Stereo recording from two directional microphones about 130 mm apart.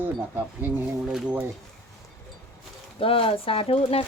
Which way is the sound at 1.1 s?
15° right (ahead or behind).